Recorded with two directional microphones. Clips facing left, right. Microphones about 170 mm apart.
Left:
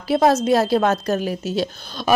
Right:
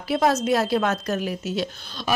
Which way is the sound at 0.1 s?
35° left (ahead or behind).